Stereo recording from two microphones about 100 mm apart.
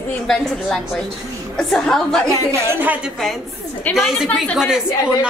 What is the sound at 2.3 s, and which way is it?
Speech, 25° right (ahead or behind).